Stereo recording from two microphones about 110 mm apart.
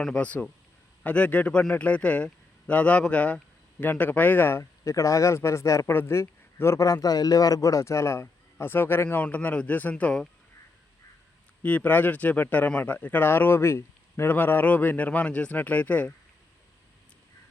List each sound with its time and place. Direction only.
0.0 s a man's voice: 10° left (ahead or behind)
11.6 s speech: 15° left (ahead or behind)